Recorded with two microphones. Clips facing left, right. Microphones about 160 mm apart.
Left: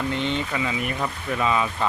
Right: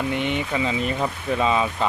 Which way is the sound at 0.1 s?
15° right (ahead or behind).